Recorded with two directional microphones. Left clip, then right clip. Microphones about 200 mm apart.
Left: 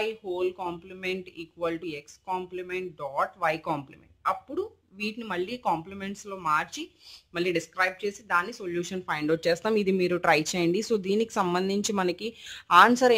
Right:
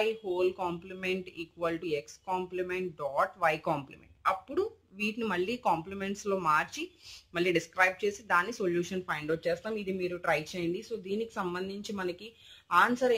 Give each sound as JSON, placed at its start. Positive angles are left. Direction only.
{"t": 0.0, "sound": "speech", "side_deg": 0}
{"t": 9.2, "sound": "speech", "side_deg": 25}